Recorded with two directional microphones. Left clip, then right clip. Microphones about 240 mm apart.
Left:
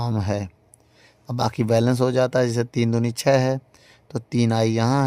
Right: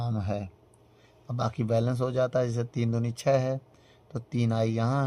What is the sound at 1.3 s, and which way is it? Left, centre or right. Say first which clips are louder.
Speech: left 8 dB; left.